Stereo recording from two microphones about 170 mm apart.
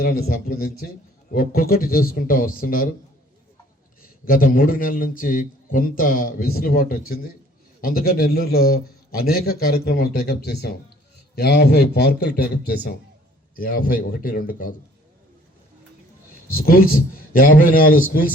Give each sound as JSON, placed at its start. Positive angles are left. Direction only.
{"t": 0.0, "sound": "a man's voice", "side_deg": 60}
{"t": 4.3, "sound": "a man's voice", "side_deg": 55}
{"t": 13.6, "sound": "a man's voice", "side_deg": 60}
{"t": 16.5, "sound": "a man's voice", "side_deg": 60}